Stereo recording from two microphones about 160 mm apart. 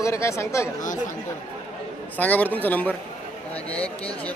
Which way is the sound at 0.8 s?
55° left (ahead or behind).